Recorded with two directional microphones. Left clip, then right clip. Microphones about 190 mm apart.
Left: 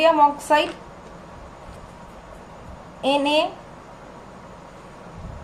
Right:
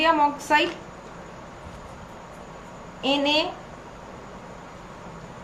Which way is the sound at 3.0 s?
50° left (ahead or behind).